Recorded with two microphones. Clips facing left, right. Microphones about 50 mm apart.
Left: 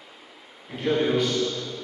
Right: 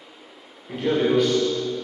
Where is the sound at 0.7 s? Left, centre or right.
Centre.